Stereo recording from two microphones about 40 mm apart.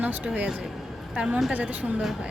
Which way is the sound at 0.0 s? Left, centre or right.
Right.